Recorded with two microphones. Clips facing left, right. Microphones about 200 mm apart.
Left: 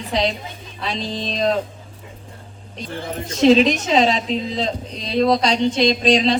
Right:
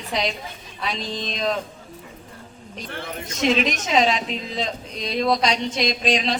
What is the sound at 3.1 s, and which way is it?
A woman's voice, 35° left (ahead or behind).